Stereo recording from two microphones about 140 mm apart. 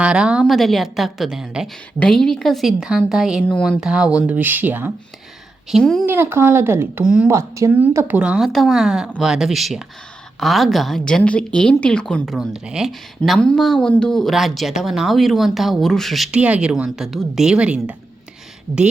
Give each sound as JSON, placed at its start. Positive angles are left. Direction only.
{"t": 0.0, "sound": "a woman's voice", "side_deg": -5}
{"t": 5.7, "sound": "a woman's voice", "side_deg": 0}
{"t": 6.1, "sound": "speech", "side_deg": -15}
{"t": 7.0, "sound": "speech", "side_deg": -5}
{"t": 7.3, "sound": "a woman's voice", "side_deg": -20}